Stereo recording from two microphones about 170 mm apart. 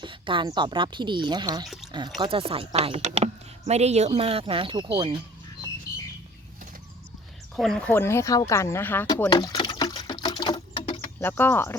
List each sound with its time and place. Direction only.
0.0 s speech: 30° right (ahead or behind)
1.6 s speech: centre (ahead or behind)
1.9 s speech: 25° right (ahead or behind)
7.5 s speech: 5° left (ahead or behind)
9.3 s a sound: 25° left (ahead or behind)
11.0 s speech: 15° left (ahead or behind)